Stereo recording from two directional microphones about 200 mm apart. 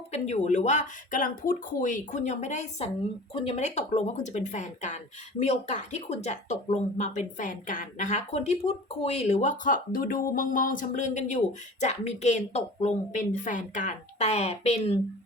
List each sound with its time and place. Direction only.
0.1 s speech: 35° left (ahead or behind)